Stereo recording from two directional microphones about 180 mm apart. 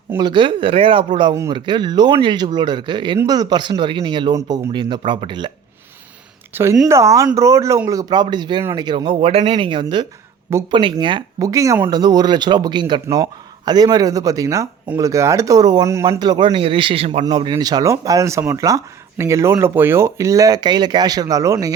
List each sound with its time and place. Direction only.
0.2 s speech: 25° right (ahead or behind)
6.5 s a woman's voice: 15° right (ahead or behind)